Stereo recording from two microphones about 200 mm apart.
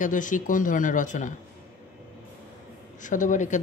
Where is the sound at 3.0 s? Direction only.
40° left (ahead or behind).